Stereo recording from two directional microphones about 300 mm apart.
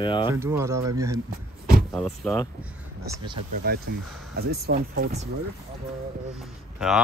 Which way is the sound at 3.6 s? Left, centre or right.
Right.